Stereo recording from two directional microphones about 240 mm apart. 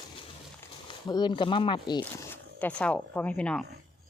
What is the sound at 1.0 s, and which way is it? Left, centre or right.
Speech, centre.